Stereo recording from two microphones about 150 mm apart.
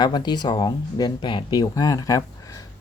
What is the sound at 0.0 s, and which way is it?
Speech, 30° left (ahead or behind).